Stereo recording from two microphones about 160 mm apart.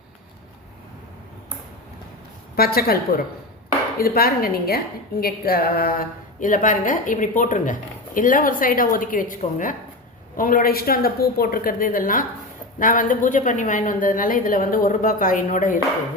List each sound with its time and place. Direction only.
2.6 s a woman's voice: 70° left (ahead or behind)